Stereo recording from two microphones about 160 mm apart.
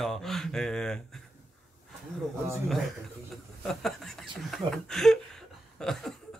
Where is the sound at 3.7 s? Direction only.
Centre (ahead or behind).